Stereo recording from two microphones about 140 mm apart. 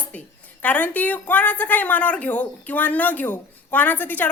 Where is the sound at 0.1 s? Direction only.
10° left (ahead or behind).